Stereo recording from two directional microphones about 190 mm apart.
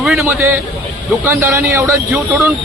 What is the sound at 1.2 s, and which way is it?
Speech, 15° right (ahead or behind).